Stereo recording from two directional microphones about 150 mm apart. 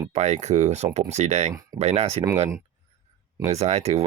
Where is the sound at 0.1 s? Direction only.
50° right (ahead or behind).